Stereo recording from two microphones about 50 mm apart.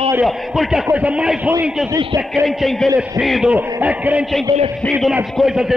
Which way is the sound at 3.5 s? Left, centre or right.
Right.